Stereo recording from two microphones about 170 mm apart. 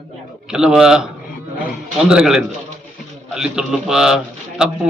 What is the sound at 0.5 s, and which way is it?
Speech, 5° right (ahead or behind).